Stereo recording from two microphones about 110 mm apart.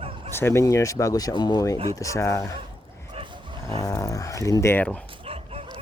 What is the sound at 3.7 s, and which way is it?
Speech, 25° left (ahead or behind).